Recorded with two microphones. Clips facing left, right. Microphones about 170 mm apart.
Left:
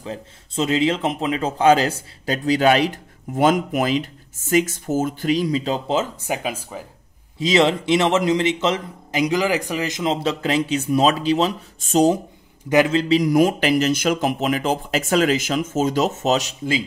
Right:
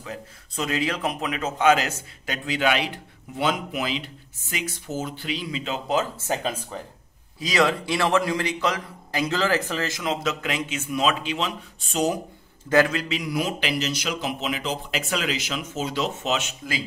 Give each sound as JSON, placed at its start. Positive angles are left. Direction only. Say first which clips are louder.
{"t": 0.0, "sound": "a man's voice", "louder": "left 5 dB", "side_deg": 25}
{"t": 6.1, "sound": "speech", "louder": "left 1 dB", "side_deg": 15}
{"t": 7.3, "sound": "a man's voice", "louder": "left 5 dB", "side_deg": 25}
{"t": 12.6, "sound": "a man's voice", "louder": "left 4 dB", "side_deg": 20}
{"t": 13.2, "sound": "speech", "louder": "left 10 dB", "side_deg": 45}